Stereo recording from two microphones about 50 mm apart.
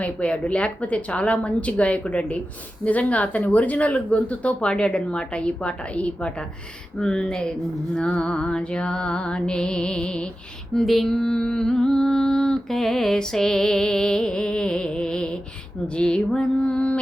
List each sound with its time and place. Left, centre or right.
0.0 s speech: left
7.0 s mantra: centre
7.9 s speech: centre
10.8 s mantra: centre
16.0 s speech: centre